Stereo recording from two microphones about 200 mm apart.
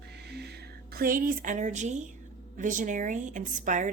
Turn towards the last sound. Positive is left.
turn(degrees=-40)  # may be behind; listen again after turning